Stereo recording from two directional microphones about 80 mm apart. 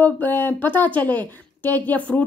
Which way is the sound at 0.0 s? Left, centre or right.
Left.